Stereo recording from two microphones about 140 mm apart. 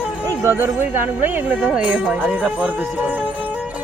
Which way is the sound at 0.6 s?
10° right (ahead or behind).